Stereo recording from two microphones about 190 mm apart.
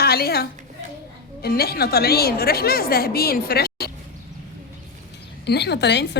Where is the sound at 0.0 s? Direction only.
55° left (ahead or behind).